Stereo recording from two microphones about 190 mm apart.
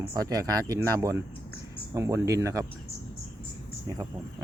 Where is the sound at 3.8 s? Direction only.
20° right (ahead or behind).